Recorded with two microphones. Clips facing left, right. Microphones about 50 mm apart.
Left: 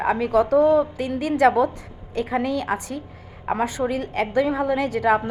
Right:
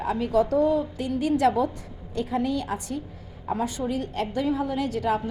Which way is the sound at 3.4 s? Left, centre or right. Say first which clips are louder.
Left 4 dB; left.